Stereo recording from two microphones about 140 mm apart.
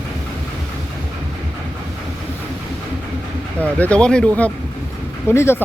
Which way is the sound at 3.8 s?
10° left (ahead or behind).